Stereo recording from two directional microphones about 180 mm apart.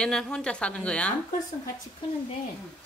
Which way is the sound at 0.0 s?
5° left (ahead or behind).